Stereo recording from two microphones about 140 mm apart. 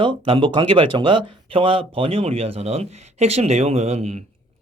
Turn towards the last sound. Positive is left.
turn(degrees=-50)  # may be behind; listen again after turning